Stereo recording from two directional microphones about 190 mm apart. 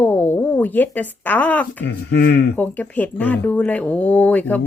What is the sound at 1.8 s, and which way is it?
Speech, 60° left (ahead or behind).